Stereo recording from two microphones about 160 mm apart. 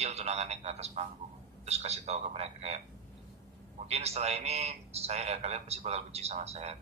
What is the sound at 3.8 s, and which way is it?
Speech, 40° right (ahead or behind).